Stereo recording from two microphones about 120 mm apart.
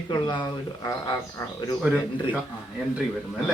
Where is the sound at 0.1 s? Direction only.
40° left (ahead or behind).